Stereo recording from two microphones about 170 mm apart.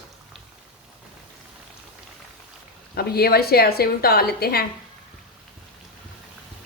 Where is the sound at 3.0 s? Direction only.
65° left (ahead or behind).